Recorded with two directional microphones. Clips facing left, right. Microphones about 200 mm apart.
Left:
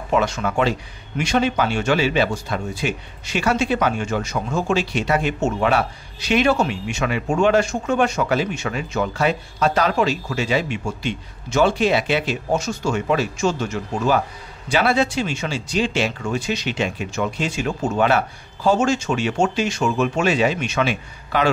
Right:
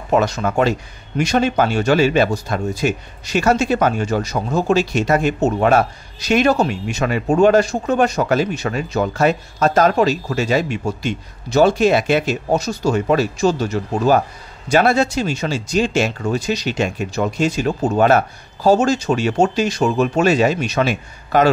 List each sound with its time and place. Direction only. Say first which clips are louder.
0.1 s speech: right 3 dB; 40° right (ahead or behind)